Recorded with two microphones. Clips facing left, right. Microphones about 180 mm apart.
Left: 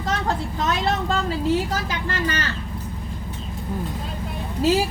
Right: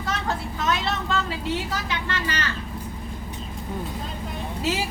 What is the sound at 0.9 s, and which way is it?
Vehicle, 40° left (ahead or behind).